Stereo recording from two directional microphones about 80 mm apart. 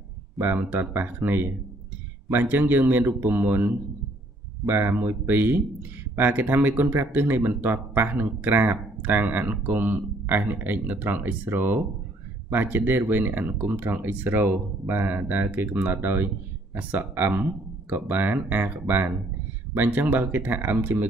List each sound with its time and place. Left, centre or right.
0.4 s speech: right